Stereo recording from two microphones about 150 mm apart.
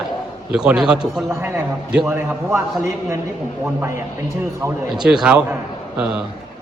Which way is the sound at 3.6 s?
15° right (ahead or behind).